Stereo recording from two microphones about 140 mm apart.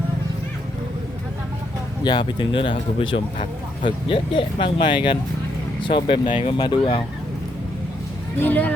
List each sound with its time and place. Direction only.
2.0 s speech: 35° left (ahead or behind)
3.8 s speech: 40° left (ahead or behind)
8.4 s speech: 10° left (ahead or behind)